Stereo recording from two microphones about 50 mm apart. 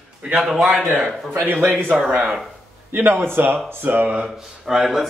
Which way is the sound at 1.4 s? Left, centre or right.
Right.